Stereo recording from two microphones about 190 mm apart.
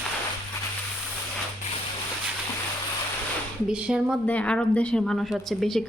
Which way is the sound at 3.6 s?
5° right (ahead or behind).